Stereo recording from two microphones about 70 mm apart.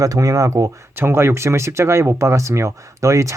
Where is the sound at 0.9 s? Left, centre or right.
Right.